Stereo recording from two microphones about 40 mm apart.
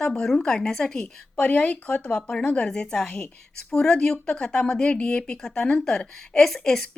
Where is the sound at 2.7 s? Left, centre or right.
Left.